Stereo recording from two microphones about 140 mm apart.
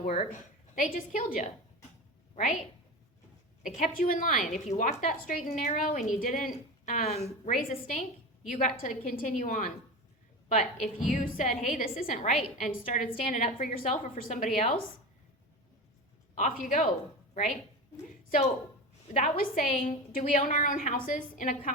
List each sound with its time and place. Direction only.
0.1 s a woman's voice: 60° left (ahead or behind)
3.6 s a woman's voice: 70° left (ahead or behind)
4.6 s a woman's voice: 55° left (ahead or behind)
7.4 s a woman's voice: 70° left (ahead or behind)
11.1 s a woman's voice: 65° left (ahead or behind)
16.3 s a woman's voice: 65° left (ahead or behind)
17.9 s a sound: 55° left (ahead or behind)
19.1 s a woman's voice: 75° left (ahead or behind)